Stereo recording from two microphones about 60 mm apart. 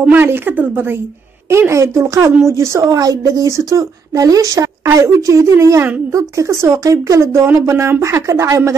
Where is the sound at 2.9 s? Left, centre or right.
Right.